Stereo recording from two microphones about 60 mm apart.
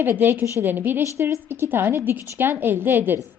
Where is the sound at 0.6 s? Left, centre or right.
Right.